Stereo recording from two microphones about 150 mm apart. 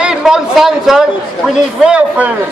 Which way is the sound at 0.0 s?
5° right (ahead or behind).